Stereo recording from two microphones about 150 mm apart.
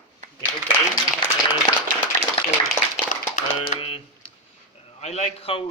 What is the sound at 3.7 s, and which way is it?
Typing, 40° left (ahead or behind).